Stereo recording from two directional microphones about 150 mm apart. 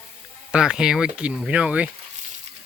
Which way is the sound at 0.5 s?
5° right (ahead or behind).